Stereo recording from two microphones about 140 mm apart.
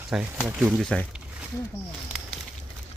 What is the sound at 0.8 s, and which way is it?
Speech, 5° left (ahead or behind).